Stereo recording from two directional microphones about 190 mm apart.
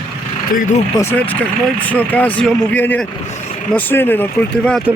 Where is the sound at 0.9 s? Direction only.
15° left (ahead or behind).